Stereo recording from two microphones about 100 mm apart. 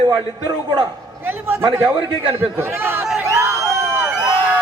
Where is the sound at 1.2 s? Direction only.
20° right (ahead or behind).